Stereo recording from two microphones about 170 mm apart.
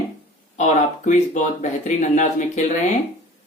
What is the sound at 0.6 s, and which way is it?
Speech, 45° left (ahead or behind).